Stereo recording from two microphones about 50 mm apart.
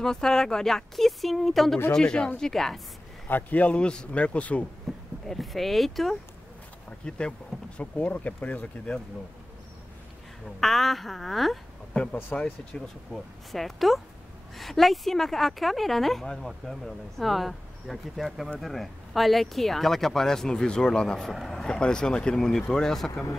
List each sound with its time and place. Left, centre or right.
0.0 s speech: centre
1.9 s speech: left
2.4 s speech: centre
3.3 s speech: left
4.9 s a woman's voice: centre
7.1 s speech: centre; by 8.6 s left
10.4 s a woman's voice: centre
12.2 s speech: left
12.8 s a woman's voice: centre